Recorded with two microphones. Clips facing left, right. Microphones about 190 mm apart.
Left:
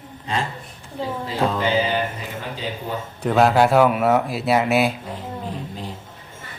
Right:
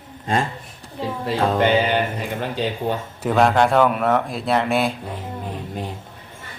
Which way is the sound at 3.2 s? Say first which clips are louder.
Left 1 dB; centre (ahead or behind).